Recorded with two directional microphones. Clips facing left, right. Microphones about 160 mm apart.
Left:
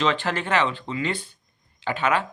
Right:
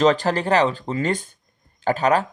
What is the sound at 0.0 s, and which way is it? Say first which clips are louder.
Speech: right 6 dB; 40° right (ahead or behind).